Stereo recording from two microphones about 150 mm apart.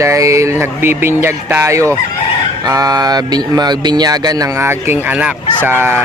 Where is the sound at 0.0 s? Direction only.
20° right (ahead or behind).